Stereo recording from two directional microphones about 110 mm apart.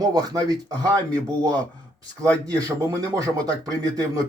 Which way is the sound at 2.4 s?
30° right (ahead or behind).